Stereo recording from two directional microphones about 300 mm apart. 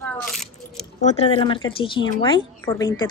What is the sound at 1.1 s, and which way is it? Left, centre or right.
A woman's voice, centre.